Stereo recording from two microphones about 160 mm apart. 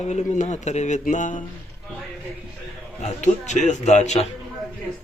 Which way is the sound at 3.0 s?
45° left (ahead or behind).